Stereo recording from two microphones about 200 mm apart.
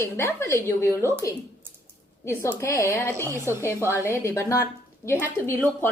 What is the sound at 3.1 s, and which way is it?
Speech, 15° right (ahead or behind).